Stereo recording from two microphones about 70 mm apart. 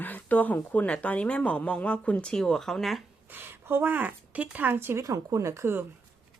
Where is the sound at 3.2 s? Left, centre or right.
Right.